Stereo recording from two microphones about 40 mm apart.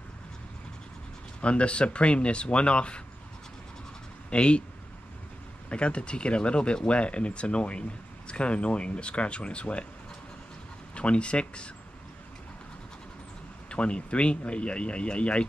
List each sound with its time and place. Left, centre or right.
1.4 s speech: left
4.3 s speech: left
5.7 s speech: left
11.0 s speech: left
13.7 s speech: left